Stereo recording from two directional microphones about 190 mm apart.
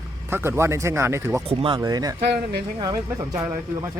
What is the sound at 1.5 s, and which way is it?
Speech, 25° right (ahead or behind).